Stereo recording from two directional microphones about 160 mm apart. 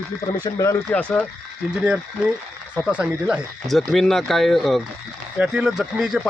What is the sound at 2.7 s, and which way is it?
Speech, 5° right (ahead or behind).